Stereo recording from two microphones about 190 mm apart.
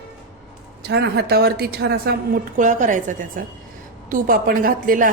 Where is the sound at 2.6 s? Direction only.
40° right (ahead or behind).